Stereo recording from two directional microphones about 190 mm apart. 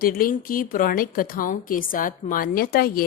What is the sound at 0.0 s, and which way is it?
A woman's voice, 50° left (ahead or behind).